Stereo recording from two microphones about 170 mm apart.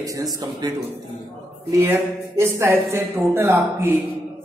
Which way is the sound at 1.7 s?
15° right (ahead or behind).